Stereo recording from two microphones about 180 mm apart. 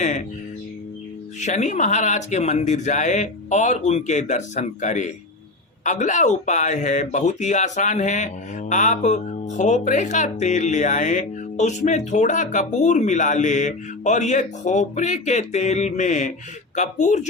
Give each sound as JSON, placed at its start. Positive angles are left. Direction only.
{"t": 1.4, "sound": "speech", "side_deg": 40}